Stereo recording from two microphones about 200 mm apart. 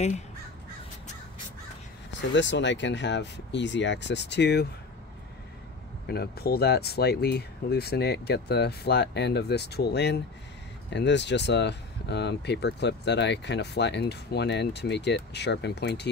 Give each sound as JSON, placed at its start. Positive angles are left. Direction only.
{"t": 2.3, "sound": "speech", "side_deg": 65}
{"t": 6.0, "sound": "speech", "side_deg": 50}